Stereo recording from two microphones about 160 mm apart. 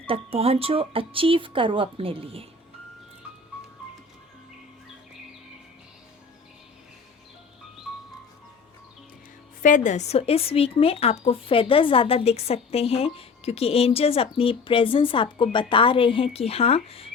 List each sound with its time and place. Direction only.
0.1 s speech: 35° right (ahead or behind)
9.6 s speech: 50° left (ahead or behind)